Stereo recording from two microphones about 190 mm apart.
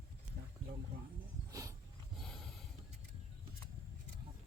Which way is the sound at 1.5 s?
15° right (ahead or behind).